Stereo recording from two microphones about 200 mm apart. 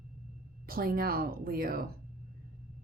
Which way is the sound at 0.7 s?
50° right (ahead or behind).